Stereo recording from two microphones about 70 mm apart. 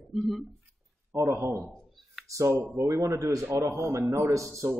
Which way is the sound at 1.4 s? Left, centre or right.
Right.